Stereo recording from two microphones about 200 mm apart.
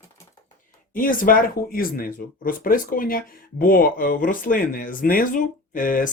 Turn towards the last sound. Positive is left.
turn(degrees=45)  # may be behind; listen again after turning